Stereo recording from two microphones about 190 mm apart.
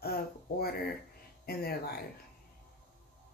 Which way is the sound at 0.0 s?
55° left (ahead or behind).